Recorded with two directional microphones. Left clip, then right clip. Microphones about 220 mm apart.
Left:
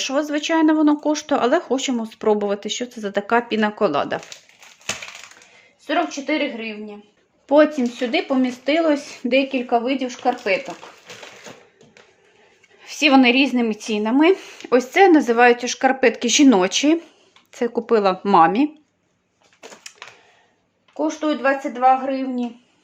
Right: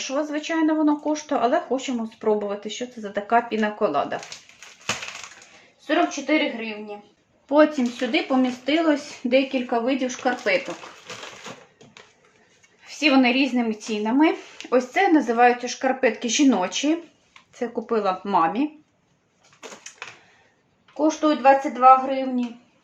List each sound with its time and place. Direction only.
0.0 s speech: 50° left (ahead or behind)
5.9 s speech: 50° left (ahead or behind)
7.4 s speech: 35° left (ahead or behind)
12.8 s speech: 45° left (ahead or behind)
21.2 s speech: 45° left (ahead or behind)